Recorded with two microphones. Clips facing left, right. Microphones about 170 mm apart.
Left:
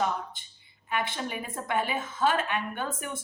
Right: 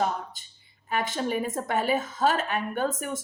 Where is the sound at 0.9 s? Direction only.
40° right (ahead or behind).